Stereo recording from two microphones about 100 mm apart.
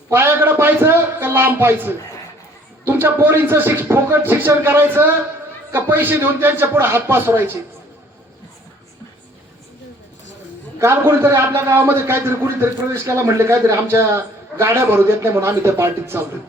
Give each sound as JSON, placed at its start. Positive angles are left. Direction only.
{"t": 0.1, "sound": "a sound", "side_deg": -25}
{"t": 2.8, "sound": "a man's voice", "side_deg": -20}
{"t": 10.8, "sound": "a man's voice", "side_deg": -25}